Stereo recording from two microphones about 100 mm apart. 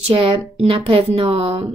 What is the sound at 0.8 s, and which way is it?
Speech, 65° right (ahead or behind).